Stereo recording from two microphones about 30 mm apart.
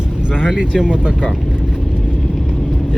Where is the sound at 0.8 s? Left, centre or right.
Right.